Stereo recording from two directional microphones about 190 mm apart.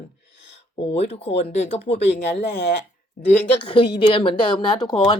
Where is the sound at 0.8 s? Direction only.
30° left (ahead or behind).